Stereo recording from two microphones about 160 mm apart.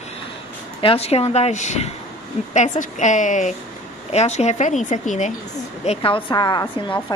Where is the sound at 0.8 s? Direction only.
40° left (ahead or behind).